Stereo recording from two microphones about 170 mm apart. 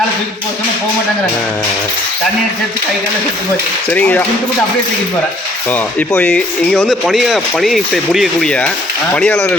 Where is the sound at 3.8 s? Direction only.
10° left (ahead or behind).